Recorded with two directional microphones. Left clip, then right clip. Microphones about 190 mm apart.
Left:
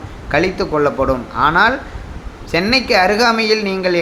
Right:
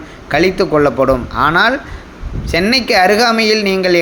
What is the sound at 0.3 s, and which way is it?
Speech, 20° right (ahead or behind).